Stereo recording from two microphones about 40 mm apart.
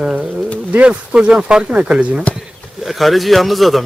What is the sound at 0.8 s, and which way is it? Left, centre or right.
Speech, right.